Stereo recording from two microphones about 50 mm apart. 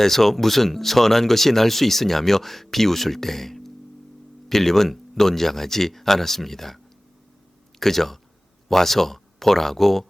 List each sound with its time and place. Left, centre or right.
0.0 s speech: centre
7.8 s speech: centre